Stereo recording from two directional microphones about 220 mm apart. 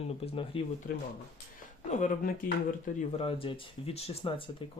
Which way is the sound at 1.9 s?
35° left (ahead or behind).